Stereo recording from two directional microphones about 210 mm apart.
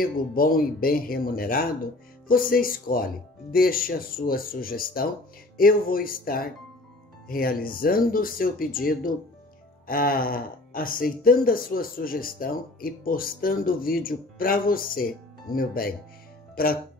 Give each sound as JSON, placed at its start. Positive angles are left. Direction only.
{"t": 0.0, "sound": "speech", "side_deg": 45}